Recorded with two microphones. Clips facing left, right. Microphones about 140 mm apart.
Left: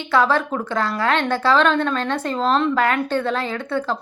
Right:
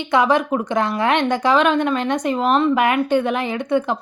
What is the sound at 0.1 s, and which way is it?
A woman's voice, 15° right (ahead or behind).